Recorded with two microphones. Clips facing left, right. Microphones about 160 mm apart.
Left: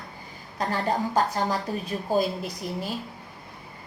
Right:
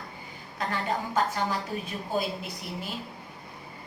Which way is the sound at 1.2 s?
35° left (ahead or behind).